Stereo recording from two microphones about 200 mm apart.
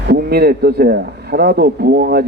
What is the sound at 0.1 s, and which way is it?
Speech, 50° right (ahead or behind).